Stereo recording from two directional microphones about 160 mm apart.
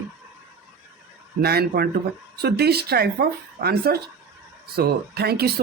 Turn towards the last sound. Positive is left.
turn(degrees=-80)